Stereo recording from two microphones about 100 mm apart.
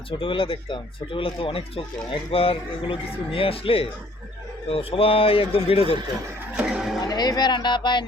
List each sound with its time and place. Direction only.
0.2 s speech: 60° left (ahead or behind); by 6.0 s 80° left
6.6 s a sound: 5° right (ahead or behind)
7.0 s speech: 45° left (ahead or behind)